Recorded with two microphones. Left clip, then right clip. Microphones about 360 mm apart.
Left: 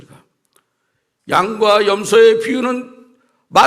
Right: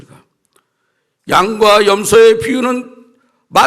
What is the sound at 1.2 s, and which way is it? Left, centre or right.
A man's voice, right.